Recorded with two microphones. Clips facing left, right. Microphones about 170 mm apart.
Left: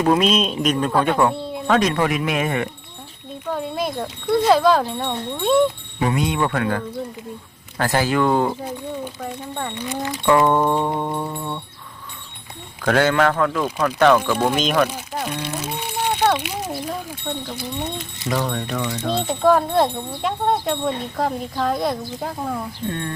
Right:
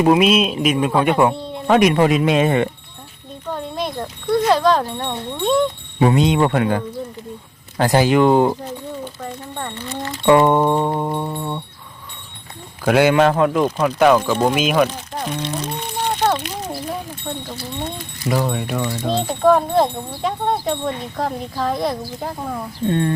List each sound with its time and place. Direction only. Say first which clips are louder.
0.0 s a sound: right 3 dB; 10° right (ahead or behind)
1.6 s speech: right 5 dB; 15° right (ahead or behind)
3.5 s speech: left 1 dB; 5° left (ahead or behind)
6.0 s speech: right 6 dB; 25° right (ahead or behind)
9.2 s speech: left 1 dB; 5° left (ahead or behind)
10.2 s a sound: right 3 dB; 20° right (ahead or behind)
12.8 s speech: right 3 dB; 10° right (ahead or behind)
13.8 s a sound: even; 10° right (ahead or behind)
14.8 s speech: right 1 dB; 5° left (ahead or behind)
18.3 s a sound: right 3 dB; 10° right (ahead or behind)
18.9 s speech: even; 5° right (ahead or behind)
22.9 s speech: right 10 dB; 30° right (ahead or behind)